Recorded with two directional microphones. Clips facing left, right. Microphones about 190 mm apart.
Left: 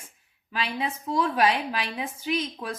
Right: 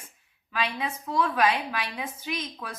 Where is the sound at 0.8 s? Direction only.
30° left (ahead or behind).